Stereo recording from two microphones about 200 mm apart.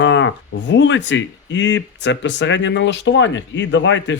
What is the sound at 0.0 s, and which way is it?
Speech, 65° left (ahead or behind).